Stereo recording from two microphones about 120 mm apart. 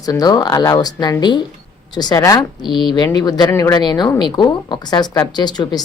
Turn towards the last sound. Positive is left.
turn(degrees=35)  # may be behind; listen again after turning